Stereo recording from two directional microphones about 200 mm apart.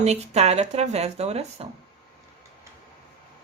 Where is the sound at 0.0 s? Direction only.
30° right (ahead or behind).